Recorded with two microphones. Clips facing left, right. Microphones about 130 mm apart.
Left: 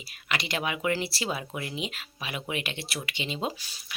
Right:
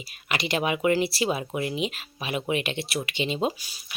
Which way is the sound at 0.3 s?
20° right (ahead or behind).